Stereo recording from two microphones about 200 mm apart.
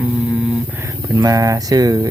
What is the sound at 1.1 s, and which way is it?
Speech, 15° right (ahead or behind).